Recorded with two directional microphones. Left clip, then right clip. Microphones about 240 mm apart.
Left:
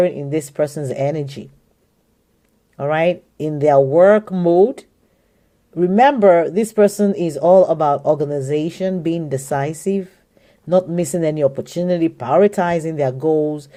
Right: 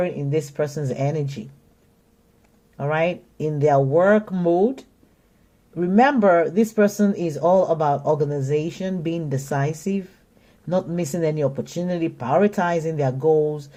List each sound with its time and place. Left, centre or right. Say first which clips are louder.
0.0 s speech: left 6 dB; left
2.7 s speech: left 5 dB; left